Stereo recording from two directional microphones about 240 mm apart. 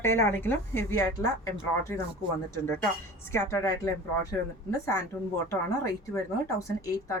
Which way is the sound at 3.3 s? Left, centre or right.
Centre.